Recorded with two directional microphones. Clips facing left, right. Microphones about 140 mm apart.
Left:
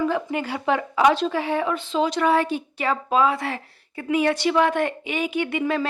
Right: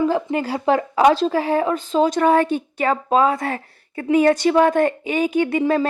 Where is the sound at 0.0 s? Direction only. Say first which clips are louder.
Right 4 dB; 30° right (ahead or behind).